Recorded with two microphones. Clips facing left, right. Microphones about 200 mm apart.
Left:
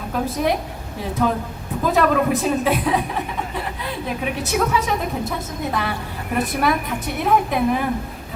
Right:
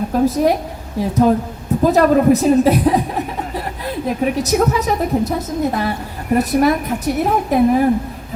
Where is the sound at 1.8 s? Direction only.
40° right (ahead or behind).